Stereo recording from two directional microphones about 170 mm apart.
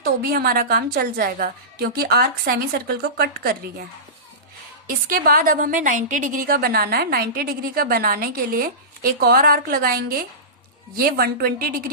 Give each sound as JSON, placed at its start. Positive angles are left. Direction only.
{"t": 0.0, "sound": "a woman's voice", "side_deg": -65}
{"t": 4.9, "sound": "a woman's voice", "side_deg": -55}